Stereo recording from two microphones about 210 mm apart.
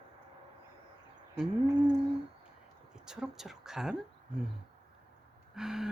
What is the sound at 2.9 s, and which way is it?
A woman's voice, 5° right (ahead or behind).